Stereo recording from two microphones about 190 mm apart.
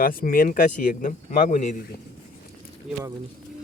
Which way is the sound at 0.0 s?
50° left (ahead or behind).